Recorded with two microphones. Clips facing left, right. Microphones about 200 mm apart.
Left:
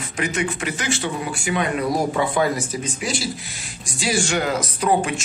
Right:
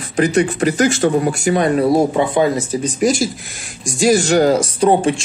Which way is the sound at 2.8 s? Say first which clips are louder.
Right 10 dB; 45° right (ahead or behind).